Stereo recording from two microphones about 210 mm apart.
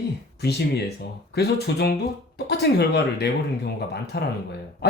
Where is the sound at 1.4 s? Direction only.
50° left (ahead or behind).